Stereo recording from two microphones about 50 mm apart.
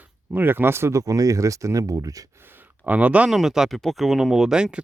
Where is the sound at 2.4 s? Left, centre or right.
Right.